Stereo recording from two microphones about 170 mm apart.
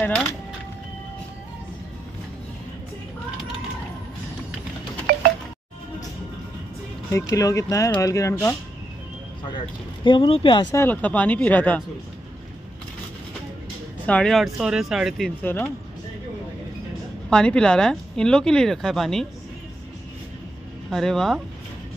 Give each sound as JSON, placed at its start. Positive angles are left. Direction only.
{"t": 0.0, "sound": "speech", "side_deg": 5}
{"t": 5.1, "sound": "a sound", "side_deg": -65}
{"t": 7.1, "sound": "speech", "side_deg": 20}
{"t": 10.0, "sound": "speech", "side_deg": 30}
{"t": 10.8, "sound": "speech", "side_deg": 10}
{"t": 14.0, "sound": "speech", "side_deg": 5}
{"t": 17.3, "sound": "speech", "side_deg": 5}
{"t": 20.9, "sound": "speech", "side_deg": 0}